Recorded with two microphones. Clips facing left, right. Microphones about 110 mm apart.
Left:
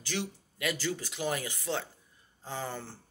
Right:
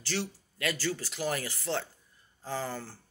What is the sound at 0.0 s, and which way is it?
Speech, 15° left (ahead or behind).